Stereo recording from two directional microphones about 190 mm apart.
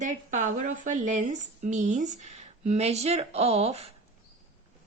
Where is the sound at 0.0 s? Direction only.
40° right (ahead or behind).